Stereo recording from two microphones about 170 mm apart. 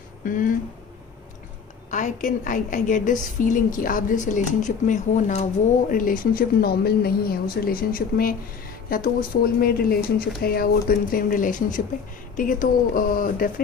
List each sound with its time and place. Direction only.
0.2 s speech: 55° left (ahead or behind)
1.9 s a woman's voice: 45° left (ahead or behind)